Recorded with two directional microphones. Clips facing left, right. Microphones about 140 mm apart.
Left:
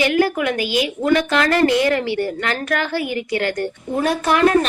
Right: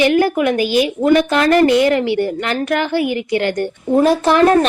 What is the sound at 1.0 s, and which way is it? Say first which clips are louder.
A woman's voice: right 4 dB; 25° right (ahead or behind).